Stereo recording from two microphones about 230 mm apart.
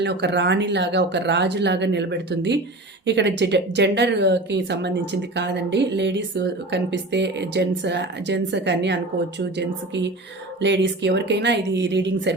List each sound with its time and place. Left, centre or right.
0.0 s speech: right